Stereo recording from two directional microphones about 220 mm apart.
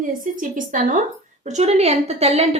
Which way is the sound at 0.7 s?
35° right (ahead or behind).